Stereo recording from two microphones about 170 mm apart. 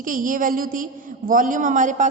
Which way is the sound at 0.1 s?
55° right (ahead or behind).